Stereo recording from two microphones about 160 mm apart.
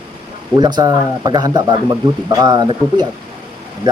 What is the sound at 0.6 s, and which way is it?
Speech, 25° right (ahead or behind).